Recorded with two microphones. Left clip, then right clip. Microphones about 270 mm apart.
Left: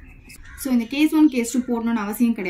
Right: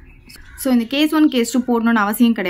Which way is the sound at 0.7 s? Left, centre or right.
Centre.